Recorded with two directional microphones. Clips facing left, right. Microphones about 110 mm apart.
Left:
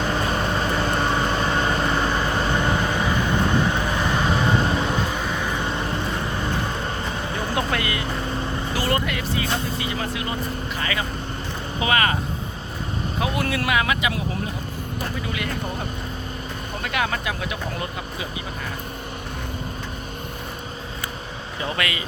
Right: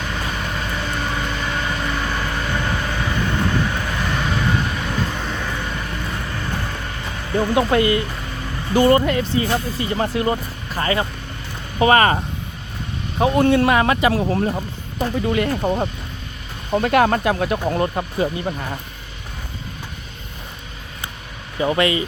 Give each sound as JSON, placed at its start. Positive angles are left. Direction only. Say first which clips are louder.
{"t": 0.1, "sound": "vehicle", "louder": "left 3 dB", "side_deg": 30}
{"t": 5.1, "sound": "vehicle", "louder": "left 1 dB", "side_deg": 10}
{"t": 5.6, "sound": "vehicle", "louder": "left 2 dB", "side_deg": 25}
{"t": 7.5, "sound": "speech", "louder": "right 9 dB", "side_deg": -25}
{"t": 13.1, "sound": "speech", "louder": "right 10 dB", "side_deg": -35}
{"t": 16.7, "sound": "speech", "louder": "right 10 dB", "side_deg": -45}
{"t": 21.6, "sound": "speech", "louder": "right 9 dB", "side_deg": -25}